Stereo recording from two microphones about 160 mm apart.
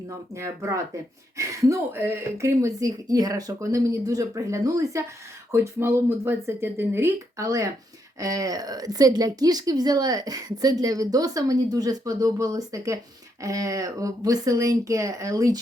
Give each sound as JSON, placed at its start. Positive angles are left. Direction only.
{"t": 0.3, "sound": "a woman's voice", "side_deg": -20}